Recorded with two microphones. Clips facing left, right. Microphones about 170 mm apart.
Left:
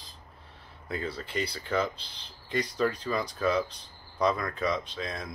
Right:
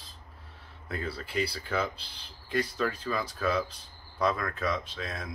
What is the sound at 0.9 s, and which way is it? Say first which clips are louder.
Speech: even; 5° right (ahead or behind).